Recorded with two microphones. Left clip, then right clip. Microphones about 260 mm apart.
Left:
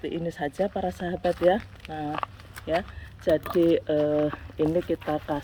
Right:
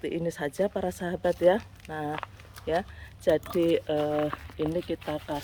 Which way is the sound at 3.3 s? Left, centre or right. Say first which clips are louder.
Left 2 dB; centre.